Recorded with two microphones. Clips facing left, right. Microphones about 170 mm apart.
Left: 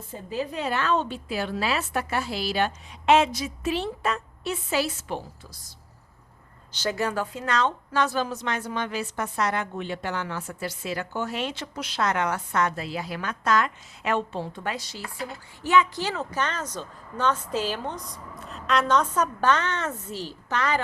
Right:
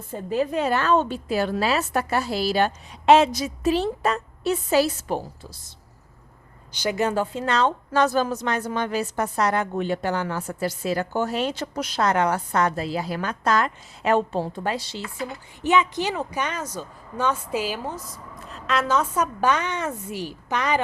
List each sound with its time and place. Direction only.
0.1 s a woman's voice: 50° right (ahead or behind)
6.7 s a woman's voice: 15° right (ahead or behind)